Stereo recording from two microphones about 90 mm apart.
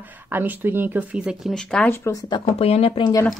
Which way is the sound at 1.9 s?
30° left (ahead or behind).